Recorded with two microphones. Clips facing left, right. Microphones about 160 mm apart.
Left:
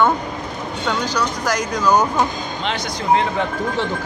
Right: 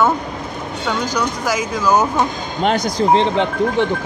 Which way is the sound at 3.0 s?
30° right (ahead or behind).